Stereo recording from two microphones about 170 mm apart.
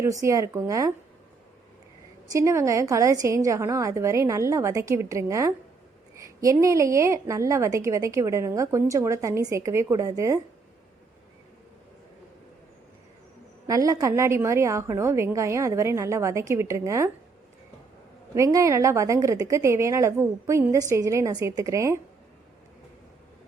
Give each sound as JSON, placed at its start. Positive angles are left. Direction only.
{"t": 0.0, "sound": "a woman's voice", "side_deg": -20}
{"t": 2.2, "sound": "a woman's voice", "side_deg": -20}
{"t": 13.7, "sound": "a woman's voice", "side_deg": -20}
{"t": 18.3, "sound": "a woman's voice", "side_deg": -20}